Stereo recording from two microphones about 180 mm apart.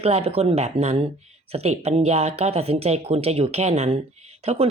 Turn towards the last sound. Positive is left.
turn(degrees=-35)  # may be behind; listen again after turning